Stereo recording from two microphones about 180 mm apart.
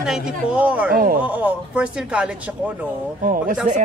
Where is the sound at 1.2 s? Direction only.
10° right (ahead or behind).